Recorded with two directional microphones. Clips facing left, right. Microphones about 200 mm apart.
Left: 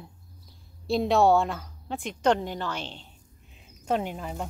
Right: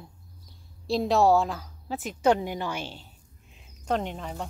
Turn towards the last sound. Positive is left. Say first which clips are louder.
# left 1 dB
turn(degrees=5)  # may be behind; listen again after turning